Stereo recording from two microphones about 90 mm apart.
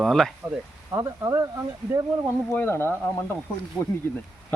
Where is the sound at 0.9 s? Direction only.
35° right (ahead or behind).